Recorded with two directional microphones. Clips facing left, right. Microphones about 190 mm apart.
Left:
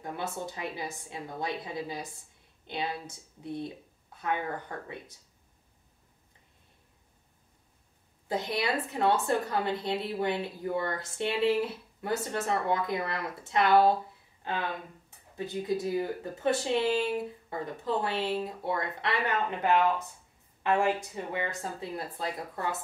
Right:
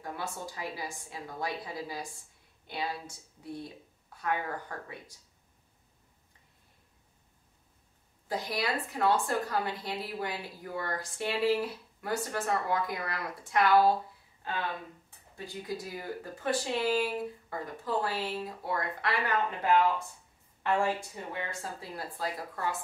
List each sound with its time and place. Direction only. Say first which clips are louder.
0.0 s speech: left 3 dB; 20° left (ahead or behind)
8.3 s speech: left 2 dB; 25° left (ahead or behind)
15.3 s speech: left 7 dB; 20° left (ahead or behind)
20.8 s speech: left 3 dB; 20° left (ahead or behind)